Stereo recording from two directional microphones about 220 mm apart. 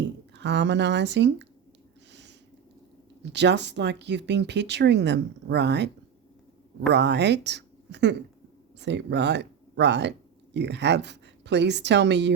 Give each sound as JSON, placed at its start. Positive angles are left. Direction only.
{"t": 0.3, "sound": "speech", "side_deg": -50}
{"t": 3.2, "sound": "speech", "side_deg": -50}
{"t": 6.9, "sound": "speech", "side_deg": -50}